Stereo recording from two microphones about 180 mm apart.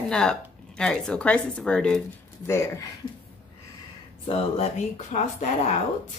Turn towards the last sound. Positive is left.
turn(degrees=35)  # may be behind; listen again after turning